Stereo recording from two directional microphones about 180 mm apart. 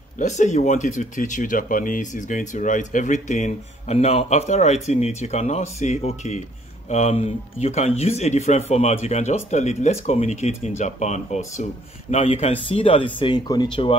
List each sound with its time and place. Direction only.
0.2 s speech: 40° left (ahead or behind); by 13.9 s 25° left (ahead or behind)